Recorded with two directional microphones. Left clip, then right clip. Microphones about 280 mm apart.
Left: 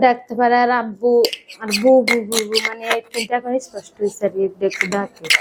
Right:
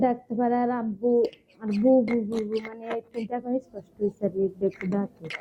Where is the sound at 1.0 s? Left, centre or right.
Left.